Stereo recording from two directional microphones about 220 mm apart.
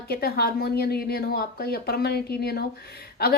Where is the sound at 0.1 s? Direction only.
45° left (ahead or behind).